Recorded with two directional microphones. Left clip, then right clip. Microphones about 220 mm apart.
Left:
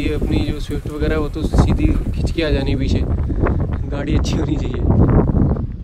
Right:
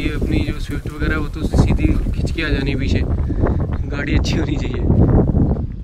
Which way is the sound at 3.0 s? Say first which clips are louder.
Even; 10° right (ahead or behind).